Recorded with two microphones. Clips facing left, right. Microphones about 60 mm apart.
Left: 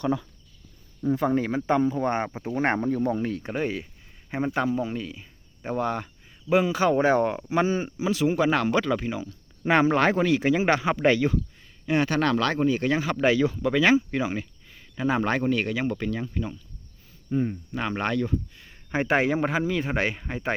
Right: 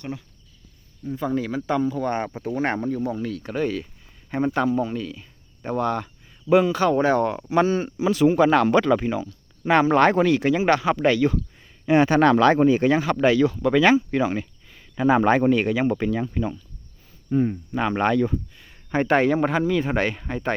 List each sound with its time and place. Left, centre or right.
1.3 s speech: left
3.5 s speech: centre
4.3 s speech: centre
8.0 s speech: centre
9.1 s a sound: centre
9.9 s speech: centre
11.6 s speech: right
12.9 s speech: centre
13.6 s speech: centre
14.7 s a sound: centre
15.4 s speech: centre